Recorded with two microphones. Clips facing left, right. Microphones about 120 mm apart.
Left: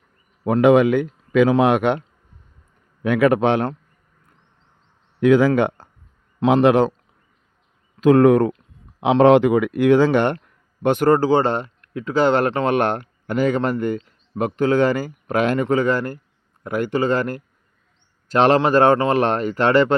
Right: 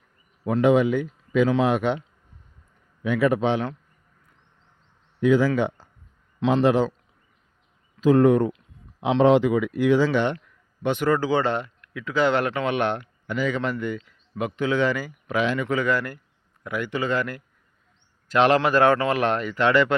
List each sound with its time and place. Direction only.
0.4 s speech: 65° left (ahead or behind)
3.0 s a man's voice: 70° left (ahead or behind)
5.2 s a man's voice: 70° left (ahead or behind)
8.0 s speech: 70° left (ahead or behind); by 15.7 s 50° left (ahead or behind)
15.7 s a man's voice: 30° left (ahead or behind)
16.6 s a man's voice: 40° left (ahead or behind)